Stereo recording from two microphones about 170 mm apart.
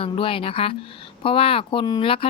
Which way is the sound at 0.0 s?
30° left (ahead or behind).